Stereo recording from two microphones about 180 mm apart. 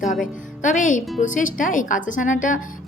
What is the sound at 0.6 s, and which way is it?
A woman's voice, 45° left (ahead or behind).